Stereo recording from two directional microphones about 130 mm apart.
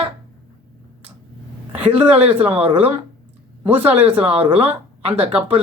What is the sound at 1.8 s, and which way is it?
Speech, 10° right (ahead or behind).